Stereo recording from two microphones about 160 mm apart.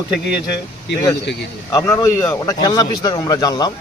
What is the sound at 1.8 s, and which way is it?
A man's voice, 15° left (ahead or behind).